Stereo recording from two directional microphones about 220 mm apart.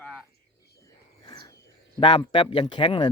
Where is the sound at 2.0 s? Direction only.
20° left (ahead or behind).